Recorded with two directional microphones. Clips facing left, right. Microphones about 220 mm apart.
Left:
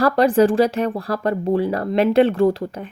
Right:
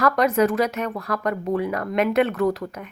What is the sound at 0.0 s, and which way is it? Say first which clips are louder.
Speech: left 4 dB; 30° left (ahead or behind).